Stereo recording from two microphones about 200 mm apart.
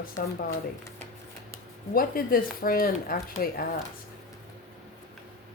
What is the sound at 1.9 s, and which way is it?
Speech, 45° left (ahead or behind).